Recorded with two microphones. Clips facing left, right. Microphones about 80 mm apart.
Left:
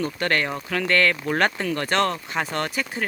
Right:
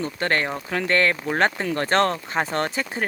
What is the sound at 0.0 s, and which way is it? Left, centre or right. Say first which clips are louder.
Speech: even; right.